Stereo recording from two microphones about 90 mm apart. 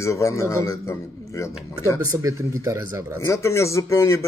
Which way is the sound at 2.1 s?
40° right (ahead or behind).